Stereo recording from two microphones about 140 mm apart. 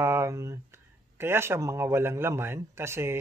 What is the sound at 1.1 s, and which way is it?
A man's voice, 15° right (ahead or behind).